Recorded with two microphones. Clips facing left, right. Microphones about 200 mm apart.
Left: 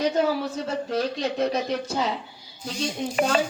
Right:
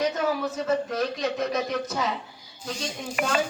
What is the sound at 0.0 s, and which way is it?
Speech, 30° left (ahead or behind).